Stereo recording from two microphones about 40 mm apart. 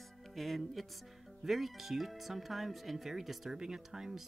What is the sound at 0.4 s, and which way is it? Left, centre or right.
Speech, centre.